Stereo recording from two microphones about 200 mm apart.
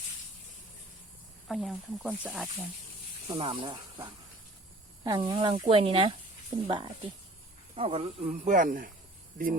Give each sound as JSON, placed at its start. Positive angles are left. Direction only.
{"t": 1.5, "sound": "speech", "side_deg": 0}
{"t": 3.2, "sound": "speech", "side_deg": -25}